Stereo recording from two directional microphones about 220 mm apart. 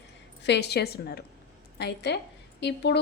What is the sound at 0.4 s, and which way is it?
A woman's voice, 50° left (ahead or behind).